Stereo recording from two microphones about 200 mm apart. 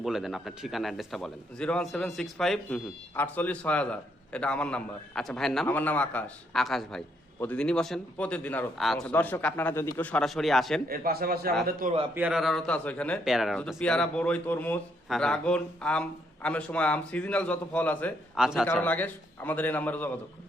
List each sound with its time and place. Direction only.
0.0 s speech: centre (ahead or behind)
10.8 s a man's voice: 50° right (ahead or behind)
12.1 s speech: 5° right (ahead or behind)
18.6 s a man's voice: 10° left (ahead or behind)